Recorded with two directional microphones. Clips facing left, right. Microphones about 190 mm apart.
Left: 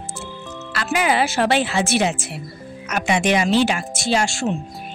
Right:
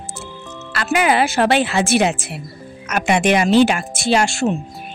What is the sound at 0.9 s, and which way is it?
Speech, 60° right (ahead or behind).